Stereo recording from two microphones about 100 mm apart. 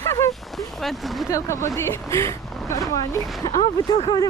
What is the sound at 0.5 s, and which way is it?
Speech, centre (ahead or behind).